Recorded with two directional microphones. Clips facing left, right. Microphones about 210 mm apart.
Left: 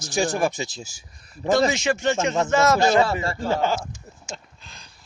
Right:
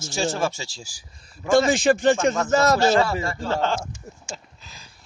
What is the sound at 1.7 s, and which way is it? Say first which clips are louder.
A man's voice: right 4 dB; 35° right (ahead or behind).